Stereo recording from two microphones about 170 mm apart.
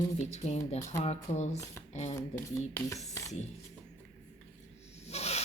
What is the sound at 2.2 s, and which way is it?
Speech, 15° left (ahead or behind).